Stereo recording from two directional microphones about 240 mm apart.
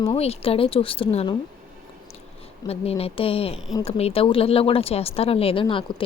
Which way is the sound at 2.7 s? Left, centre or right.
Left.